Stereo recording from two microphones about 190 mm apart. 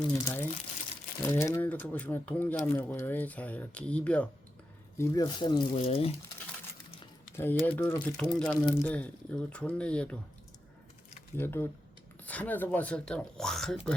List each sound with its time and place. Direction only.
0.0 s speech: 20° left (ahead or behind)
4.9 s speech: 20° left (ahead or behind)
7.6 s speech: 10° left (ahead or behind)
11.3 s speech: 10° left (ahead or behind)